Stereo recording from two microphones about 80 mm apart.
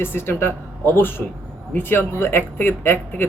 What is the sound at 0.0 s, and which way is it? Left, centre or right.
Speech, left.